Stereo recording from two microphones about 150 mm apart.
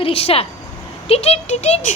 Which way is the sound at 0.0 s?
40° left (ahead or behind).